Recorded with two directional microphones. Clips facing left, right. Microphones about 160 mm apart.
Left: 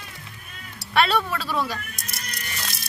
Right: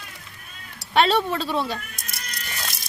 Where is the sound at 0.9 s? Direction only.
30° right (ahead or behind).